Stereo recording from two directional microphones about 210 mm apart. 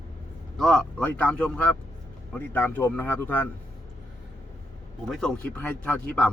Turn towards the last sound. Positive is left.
turn(degrees=5)  # may be behind; listen again after turning